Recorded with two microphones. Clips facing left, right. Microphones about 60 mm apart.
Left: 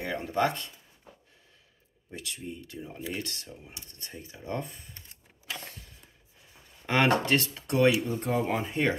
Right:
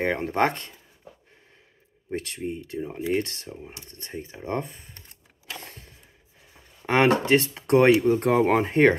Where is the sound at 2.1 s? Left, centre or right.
Right.